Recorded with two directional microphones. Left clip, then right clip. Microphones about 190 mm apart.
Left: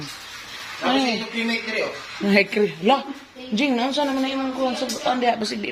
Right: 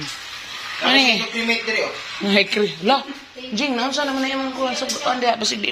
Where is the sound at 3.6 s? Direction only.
35° left (ahead or behind).